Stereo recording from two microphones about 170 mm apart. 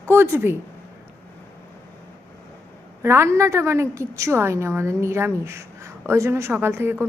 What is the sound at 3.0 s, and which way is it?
A woman's voice, 15° right (ahead or behind).